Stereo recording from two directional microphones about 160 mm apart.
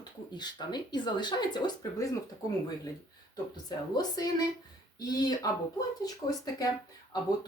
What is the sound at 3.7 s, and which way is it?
Speech, 25° left (ahead or behind).